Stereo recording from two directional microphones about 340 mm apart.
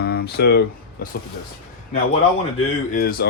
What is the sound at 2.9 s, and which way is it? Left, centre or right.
Speech, left.